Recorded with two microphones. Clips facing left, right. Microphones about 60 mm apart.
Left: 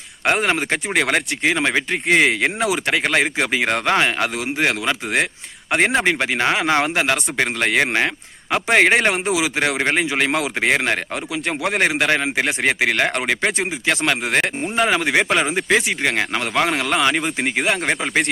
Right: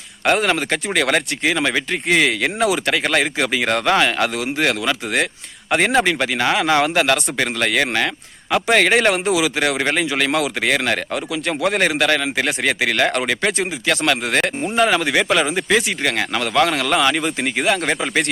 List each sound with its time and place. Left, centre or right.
0.3 s speech: centre
11.4 s speech: centre
14.4 s speech: centre